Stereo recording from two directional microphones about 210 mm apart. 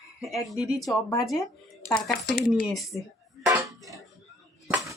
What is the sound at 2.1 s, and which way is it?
Speech, 45° left (ahead or behind).